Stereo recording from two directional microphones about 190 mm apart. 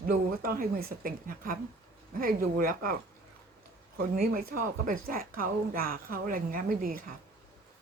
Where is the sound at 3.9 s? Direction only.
50° right (ahead or behind).